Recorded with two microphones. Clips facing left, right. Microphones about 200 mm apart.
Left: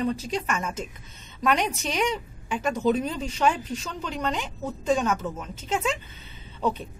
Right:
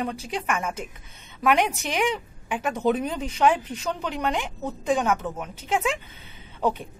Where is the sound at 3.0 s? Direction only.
15° right (ahead or behind).